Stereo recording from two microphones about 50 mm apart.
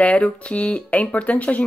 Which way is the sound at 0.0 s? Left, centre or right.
Left.